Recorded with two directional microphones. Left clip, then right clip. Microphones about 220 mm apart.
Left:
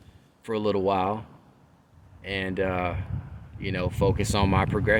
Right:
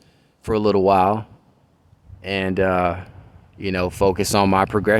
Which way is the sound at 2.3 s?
35° right (ahead or behind).